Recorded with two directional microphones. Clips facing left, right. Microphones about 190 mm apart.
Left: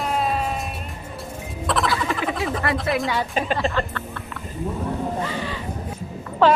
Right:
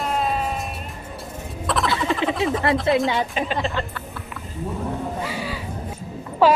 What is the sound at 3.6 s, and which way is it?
Speech, 20° right (ahead or behind).